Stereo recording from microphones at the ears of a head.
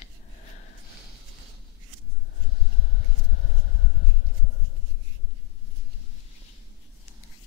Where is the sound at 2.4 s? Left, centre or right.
Left.